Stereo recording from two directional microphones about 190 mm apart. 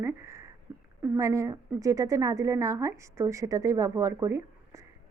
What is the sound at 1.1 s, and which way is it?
A woman's voice, 15° right (ahead or behind).